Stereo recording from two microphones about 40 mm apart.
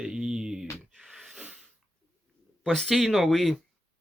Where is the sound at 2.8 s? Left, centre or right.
Centre.